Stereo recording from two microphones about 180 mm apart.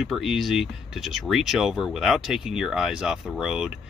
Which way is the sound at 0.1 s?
Centre (ahead or behind).